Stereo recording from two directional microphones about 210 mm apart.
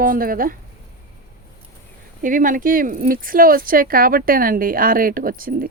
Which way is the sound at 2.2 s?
40° right (ahead or behind).